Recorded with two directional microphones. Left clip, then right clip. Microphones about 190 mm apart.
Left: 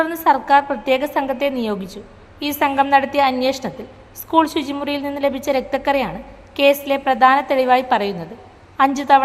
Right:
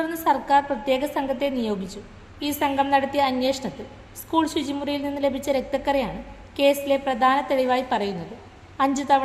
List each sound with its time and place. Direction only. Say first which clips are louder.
0.0 s a woman's voice: left 6 dB; 15° left (ahead or behind)